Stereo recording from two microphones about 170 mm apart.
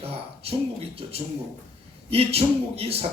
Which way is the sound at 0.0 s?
35° right (ahead or behind).